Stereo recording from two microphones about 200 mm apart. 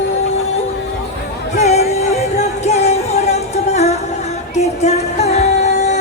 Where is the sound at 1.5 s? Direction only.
30° left (ahead or behind).